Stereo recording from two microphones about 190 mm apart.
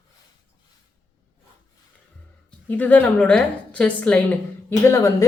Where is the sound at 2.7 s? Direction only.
10° left (ahead or behind).